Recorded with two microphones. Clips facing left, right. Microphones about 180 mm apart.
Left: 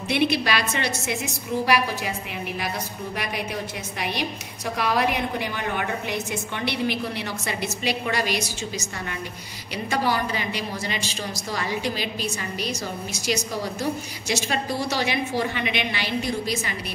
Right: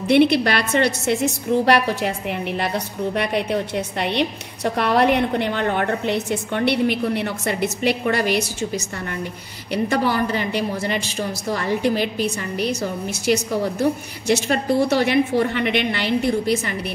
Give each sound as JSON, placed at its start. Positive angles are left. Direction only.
{"t": 0.1, "sound": "a woman's voice", "side_deg": -60}